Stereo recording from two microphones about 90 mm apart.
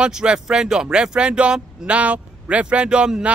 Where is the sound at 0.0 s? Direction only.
10° right (ahead or behind).